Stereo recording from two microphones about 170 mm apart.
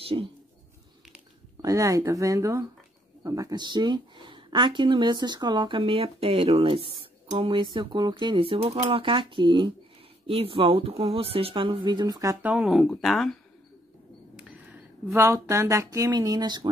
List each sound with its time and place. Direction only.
0.0 s speech: 35° right (ahead or behind)
1.6 s speech: 20° right (ahead or behind); by 13.4 s centre (ahead or behind)
14.3 s speech: 10° right (ahead or behind)